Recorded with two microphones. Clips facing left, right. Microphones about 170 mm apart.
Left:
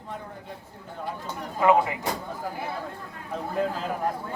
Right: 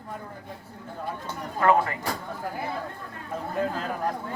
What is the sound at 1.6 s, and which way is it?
Speech, 5° left (ahead or behind).